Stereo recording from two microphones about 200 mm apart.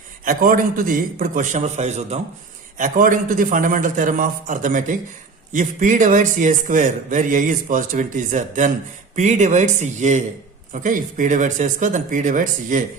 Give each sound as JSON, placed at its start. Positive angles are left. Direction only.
{"t": 0.3, "sound": "a man's voice", "side_deg": -45}